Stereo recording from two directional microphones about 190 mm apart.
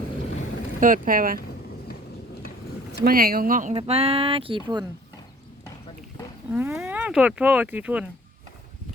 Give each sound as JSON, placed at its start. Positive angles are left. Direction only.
{"t": 0.8, "sound": "speech", "side_deg": -45}
{"t": 3.0, "sound": "speech", "side_deg": -50}
{"t": 6.5, "sound": "speech", "side_deg": -10}